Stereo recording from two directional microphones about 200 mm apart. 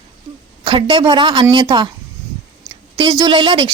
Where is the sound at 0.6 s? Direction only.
25° right (ahead or behind).